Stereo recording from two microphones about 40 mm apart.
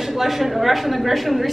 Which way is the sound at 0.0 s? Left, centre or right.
Centre.